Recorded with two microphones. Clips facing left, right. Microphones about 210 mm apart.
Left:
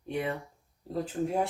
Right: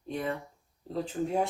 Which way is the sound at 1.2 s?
15° left (ahead or behind).